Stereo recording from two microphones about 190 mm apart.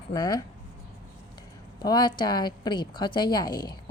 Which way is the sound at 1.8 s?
20° left (ahead or behind).